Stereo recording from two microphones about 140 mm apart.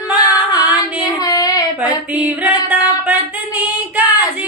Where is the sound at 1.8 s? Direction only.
10° right (ahead or behind).